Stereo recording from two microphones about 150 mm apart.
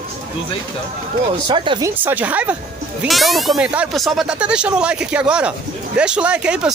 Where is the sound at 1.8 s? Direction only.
15° right (ahead or behind).